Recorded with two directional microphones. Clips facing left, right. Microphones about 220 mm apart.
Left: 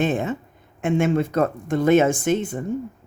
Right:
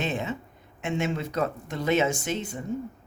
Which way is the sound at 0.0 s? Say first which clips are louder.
Left 7 dB; 50° left (ahead or behind).